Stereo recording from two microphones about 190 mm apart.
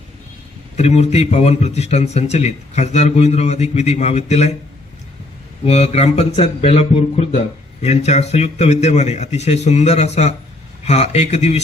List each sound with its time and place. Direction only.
0.8 s speech: 35° left (ahead or behind)
5.6 s speech: 35° left (ahead or behind)